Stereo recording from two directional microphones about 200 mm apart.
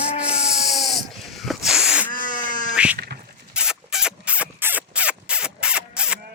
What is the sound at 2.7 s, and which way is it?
Cat, 5° right (ahead or behind).